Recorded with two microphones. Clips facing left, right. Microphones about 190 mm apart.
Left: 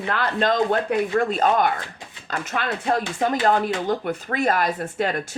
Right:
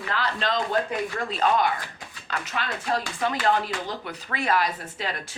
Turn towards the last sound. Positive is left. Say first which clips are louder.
# left 8 dB
turn(degrees=50)  # may be behind; listen again after turning